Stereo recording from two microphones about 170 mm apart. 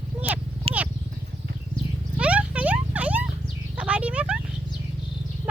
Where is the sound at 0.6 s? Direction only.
35° right (ahead or behind).